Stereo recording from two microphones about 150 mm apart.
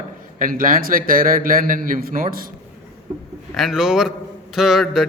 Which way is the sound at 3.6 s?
Centre (ahead or behind).